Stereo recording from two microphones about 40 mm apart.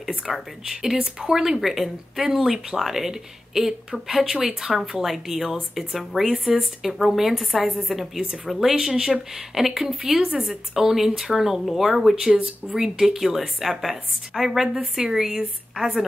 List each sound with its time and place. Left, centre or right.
0.3 s speech: centre
10.1 s a woman's voice: right
10.4 s speech: centre